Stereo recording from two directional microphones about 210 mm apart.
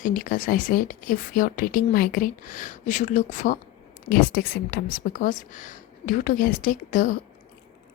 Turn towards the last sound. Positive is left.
turn(degrees=40)  # may be behind; listen again after turning